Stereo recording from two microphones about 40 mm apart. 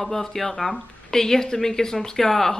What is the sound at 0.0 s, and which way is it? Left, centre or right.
Speech, centre.